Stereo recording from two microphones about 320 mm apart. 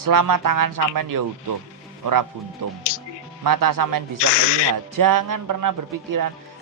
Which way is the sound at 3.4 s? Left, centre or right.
Right.